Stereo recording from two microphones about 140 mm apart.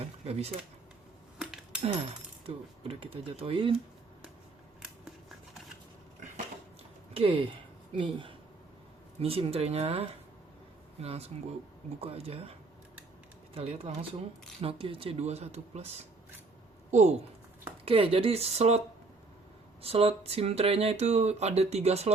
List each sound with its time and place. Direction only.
0.0 s a sound: 50° right (ahead or behind)
1.4 s coin: 5° right (ahead or behind)
2.5 s speech: 45° right (ahead or behind)
7.1 s speech: 40° right (ahead or behind)
16.9 s speech: 50° right (ahead or behind)
19.8 s speech: 45° right (ahead or behind)